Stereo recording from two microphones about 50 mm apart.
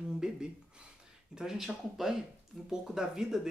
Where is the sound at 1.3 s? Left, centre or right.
Centre.